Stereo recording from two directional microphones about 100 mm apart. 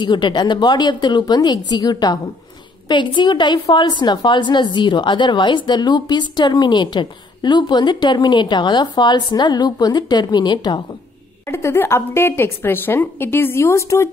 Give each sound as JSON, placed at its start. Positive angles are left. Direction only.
{"t": 0.0, "sound": "a woman's voice", "side_deg": 50}
{"t": 2.9, "sound": "a woman's voice", "side_deg": 50}
{"t": 11.4, "sound": "a woman's voice", "side_deg": 25}